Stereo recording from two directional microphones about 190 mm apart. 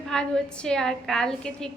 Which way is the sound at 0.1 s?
5° left (ahead or behind).